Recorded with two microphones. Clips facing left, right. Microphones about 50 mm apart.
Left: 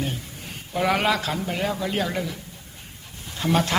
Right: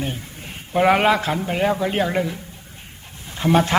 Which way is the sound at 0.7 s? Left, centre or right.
Right.